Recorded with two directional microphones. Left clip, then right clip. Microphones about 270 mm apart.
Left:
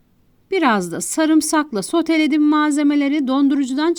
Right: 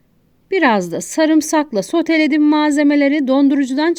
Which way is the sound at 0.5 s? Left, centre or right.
Centre.